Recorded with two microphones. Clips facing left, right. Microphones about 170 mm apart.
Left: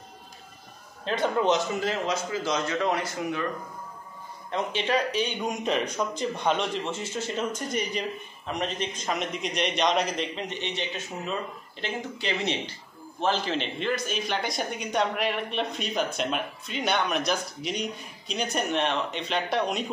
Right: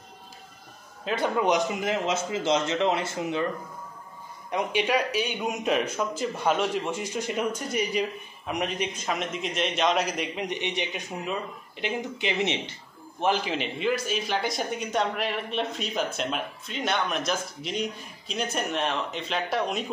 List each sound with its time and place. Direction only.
1.0 s speech: 10° right (ahead or behind); by 3.4 s 25° right (ahead or behind)
4.5 s a man's voice: 15° right (ahead or behind)